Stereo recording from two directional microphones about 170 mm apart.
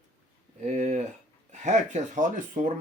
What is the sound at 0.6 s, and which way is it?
Speech, 45° right (ahead or behind).